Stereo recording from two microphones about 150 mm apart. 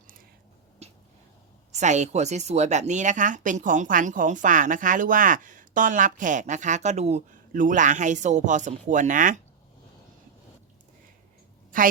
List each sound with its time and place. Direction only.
0.8 s a sound: 45° right (ahead or behind)
1.7 s speech: 50° right (ahead or behind)
11.7 s a woman's voice: 65° right (ahead or behind)